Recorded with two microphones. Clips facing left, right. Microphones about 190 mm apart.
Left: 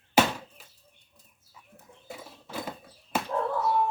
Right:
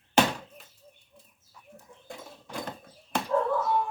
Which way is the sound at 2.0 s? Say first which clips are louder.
Even; 5° left (ahead or behind).